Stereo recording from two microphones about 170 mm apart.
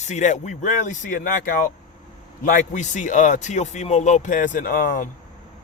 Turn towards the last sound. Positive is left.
turn(degrees=55)  # may be behind; listen again after turning